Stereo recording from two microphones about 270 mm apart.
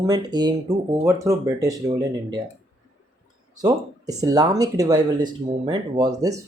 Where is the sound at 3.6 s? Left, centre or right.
Centre.